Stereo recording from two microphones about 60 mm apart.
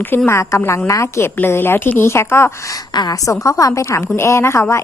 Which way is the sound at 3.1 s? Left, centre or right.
Left.